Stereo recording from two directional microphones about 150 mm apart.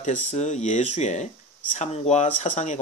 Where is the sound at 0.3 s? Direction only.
50° left (ahead or behind).